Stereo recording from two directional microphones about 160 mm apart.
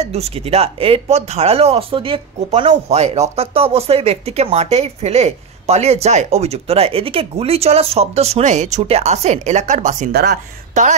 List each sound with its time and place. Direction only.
0.0 s speech: 40° right (ahead or behind)
10.1 s speech: 80° right
10.7 s speech: 50° right (ahead or behind)